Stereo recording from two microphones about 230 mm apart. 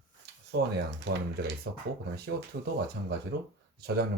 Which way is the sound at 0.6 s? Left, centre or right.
Right.